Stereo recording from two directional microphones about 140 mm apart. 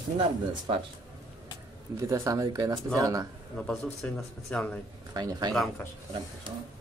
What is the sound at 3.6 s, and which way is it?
A man's voice, 5° left (ahead or behind).